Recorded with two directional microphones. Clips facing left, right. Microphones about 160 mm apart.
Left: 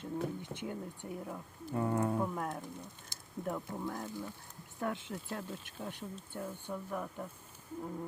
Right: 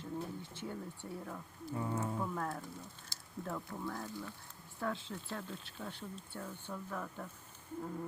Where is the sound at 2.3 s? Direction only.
20° left (ahead or behind).